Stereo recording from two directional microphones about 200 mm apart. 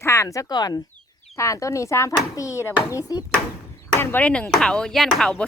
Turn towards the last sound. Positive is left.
turn(degrees=0)  # may be behind; listen again after turning